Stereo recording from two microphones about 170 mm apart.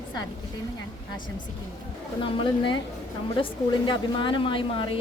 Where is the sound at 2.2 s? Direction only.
30° left (ahead or behind).